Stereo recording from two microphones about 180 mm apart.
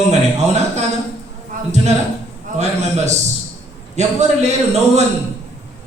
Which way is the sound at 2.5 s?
40° right (ahead or behind).